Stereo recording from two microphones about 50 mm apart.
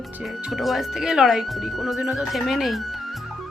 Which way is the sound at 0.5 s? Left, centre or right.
Centre.